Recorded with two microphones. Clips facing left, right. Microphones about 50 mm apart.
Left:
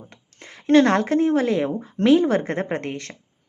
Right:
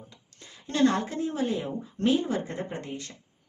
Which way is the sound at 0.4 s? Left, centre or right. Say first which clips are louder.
Left 9 dB; left.